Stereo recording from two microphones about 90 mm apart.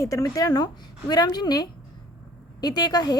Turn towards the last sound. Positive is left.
turn(degrees=45)  # may be behind; listen again after turning